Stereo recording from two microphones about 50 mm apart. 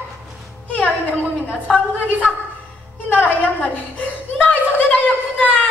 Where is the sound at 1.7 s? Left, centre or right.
Centre.